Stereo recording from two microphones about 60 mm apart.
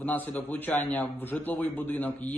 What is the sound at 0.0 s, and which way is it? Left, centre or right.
A man's voice, left.